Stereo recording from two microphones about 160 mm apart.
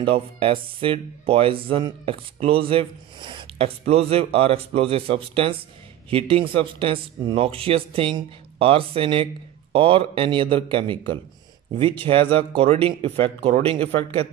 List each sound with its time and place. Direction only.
0.0 s speech: 35° right (ahead or behind)